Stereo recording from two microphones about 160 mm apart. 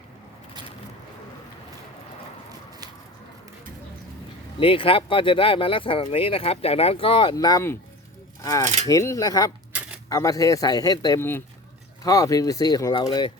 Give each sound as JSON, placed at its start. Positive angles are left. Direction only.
{"t": 4.6, "sound": "speech", "side_deg": 35}
{"t": 11.2, "sound": "speech", "side_deg": 15}